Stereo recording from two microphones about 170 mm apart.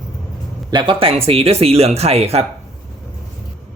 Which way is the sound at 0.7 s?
30° right (ahead or behind).